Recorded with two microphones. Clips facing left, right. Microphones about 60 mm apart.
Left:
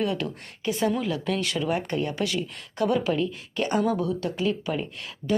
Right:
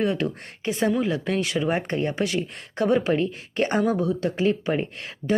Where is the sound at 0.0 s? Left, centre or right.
Right.